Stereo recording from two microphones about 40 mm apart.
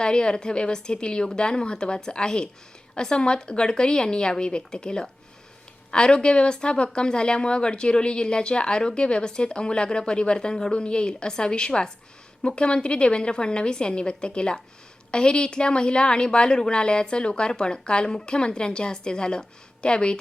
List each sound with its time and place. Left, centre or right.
0.0 s a woman's voice: left